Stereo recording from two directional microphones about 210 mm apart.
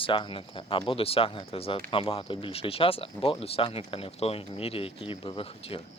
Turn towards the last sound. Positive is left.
turn(degrees=25)  # may be behind; listen again after turning